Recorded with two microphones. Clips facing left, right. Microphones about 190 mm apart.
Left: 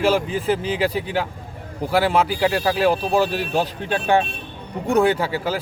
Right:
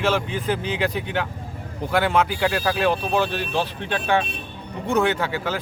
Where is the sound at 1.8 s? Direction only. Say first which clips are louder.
Left 2 dB; 5° left (ahead or behind).